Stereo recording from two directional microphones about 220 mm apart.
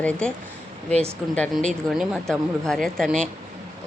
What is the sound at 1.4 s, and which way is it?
Speech, centre (ahead or behind).